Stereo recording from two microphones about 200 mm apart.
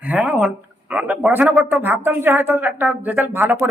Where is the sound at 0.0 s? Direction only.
5° right (ahead or behind).